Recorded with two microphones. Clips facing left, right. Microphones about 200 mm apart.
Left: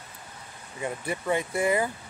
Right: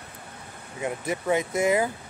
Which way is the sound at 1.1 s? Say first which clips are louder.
Right 3 dB; 5° right (ahead or behind).